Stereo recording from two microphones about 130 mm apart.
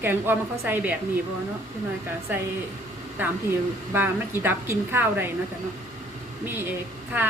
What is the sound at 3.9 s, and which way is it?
A woman's voice, 15° right (ahead or behind).